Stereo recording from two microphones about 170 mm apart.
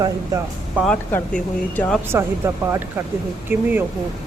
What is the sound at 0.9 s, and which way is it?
Speech, 10° left (ahead or behind).